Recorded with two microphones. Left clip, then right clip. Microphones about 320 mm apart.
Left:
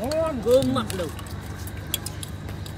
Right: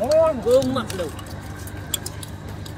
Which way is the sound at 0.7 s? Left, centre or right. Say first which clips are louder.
Right 1 dB; centre.